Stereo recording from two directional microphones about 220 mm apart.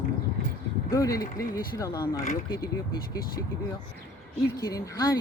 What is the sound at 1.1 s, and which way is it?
Speech, 45° left (ahead or behind).